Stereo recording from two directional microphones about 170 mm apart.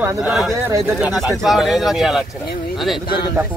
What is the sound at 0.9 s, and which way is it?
Speech, centre (ahead or behind).